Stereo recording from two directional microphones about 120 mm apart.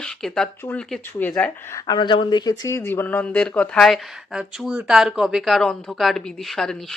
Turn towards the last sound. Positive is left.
turn(degrees=5)  # may be behind; listen again after turning